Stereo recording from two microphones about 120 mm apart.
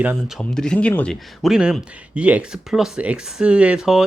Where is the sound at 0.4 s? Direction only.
5° left (ahead or behind).